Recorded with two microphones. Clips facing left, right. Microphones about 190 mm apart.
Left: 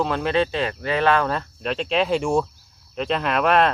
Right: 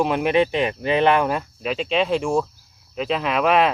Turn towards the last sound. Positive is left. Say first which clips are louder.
# right 1 dB
turn(degrees=0)  # may be behind; listen again after turning